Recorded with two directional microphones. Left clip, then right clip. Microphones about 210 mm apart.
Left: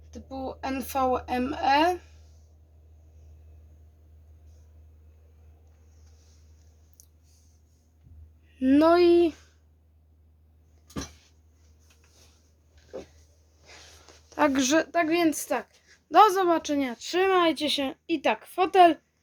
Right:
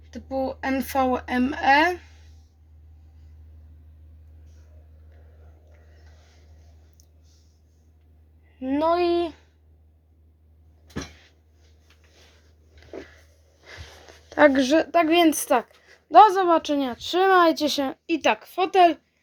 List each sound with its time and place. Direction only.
0.1 s speech: 25° right (ahead or behind)
8.5 s speech: 35° left (ahead or behind)
14.3 s a sound: 10° right (ahead or behind)
14.5 s speech: centre (ahead or behind)
14.9 s speech: 25° right (ahead or behind)
16.0 s speech: 5° left (ahead or behind)